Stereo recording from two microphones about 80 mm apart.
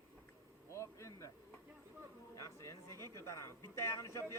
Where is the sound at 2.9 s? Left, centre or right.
Right.